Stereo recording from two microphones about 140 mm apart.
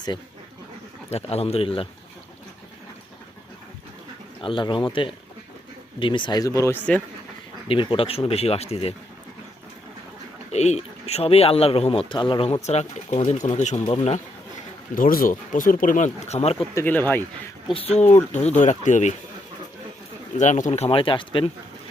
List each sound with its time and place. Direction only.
1.1 s speech: 50° left (ahead or behind)
4.4 s speech: 35° left (ahead or behind); by 7.0 s 10° left (ahead or behind)
7.7 s speech: 40° left (ahead or behind)
10.5 s speech: 50° left (ahead or behind)
12.6 s speech: 55° left (ahead or behind)
14.9 s speech: 85° left; by 16.6 s 50° left (ahead or behind)
16.7 s speech: 15° left (ahead or behind)
17.7 s speech: 50° left (ahead or behind)
20.4 s speech: 60° left (ahead or behind); by 21.5 s 35° left (ahead or behind)